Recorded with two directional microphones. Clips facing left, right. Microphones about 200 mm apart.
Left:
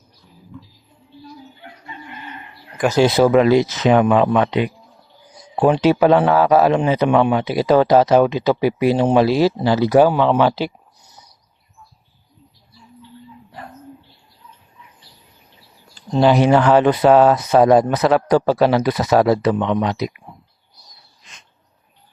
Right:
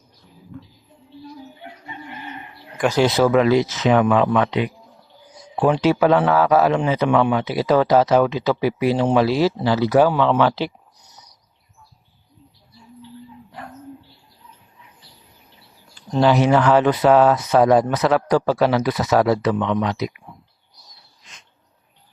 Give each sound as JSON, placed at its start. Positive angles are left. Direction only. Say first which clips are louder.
{"t": 2.8, "sound": "speech", "louder": "left 3 dB", "side_deg": 10}
{"t": 5.7, "sound": "speech", "louder": "left 2 dB", "side_deg": 30}
{"t": 7.1, "sound": "speech", "louder": "left 2 dB", "side_deg": 20}
{"t": 16.0, "sound": "speech", "louder": "left 2 dB", "side_deg": 15}
{"t": 16.4, "sound": "speech", "louder": "left 2 dB", "side_deg": 30}
{"t": 19.5, "sound": "speech", "louder": "left 2 dB", "side_deg": 20}
{"t": 19.8, "sound": "speech", "louder": "left 2 dB", "side_deg": 35}